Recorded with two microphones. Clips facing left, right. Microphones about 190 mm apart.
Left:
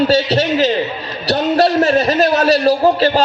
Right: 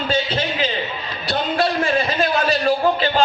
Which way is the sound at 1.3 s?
40° left (ahead or behind).